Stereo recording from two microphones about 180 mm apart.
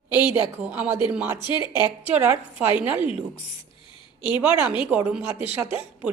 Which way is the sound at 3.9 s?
25° left (ahead or behind).